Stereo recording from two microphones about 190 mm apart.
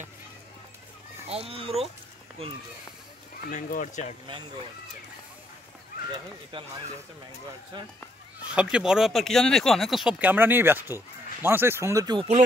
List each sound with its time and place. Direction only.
1.2 s speech: 30° right (ahead or behind)
3.4 s speech: 45° left (ahead or behind)
6.5 s speech: 25° right (ahead or behind)
7.7 s speech: 25° right (ahead or behind)
8.5 s speech: 5° right (ahead or behind); by 12.3 s 20° right (ahead or behind)